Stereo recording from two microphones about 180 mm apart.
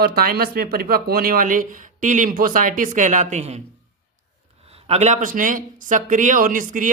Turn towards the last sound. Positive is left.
turn(degrees=-45)  # may be behind; listen again after turning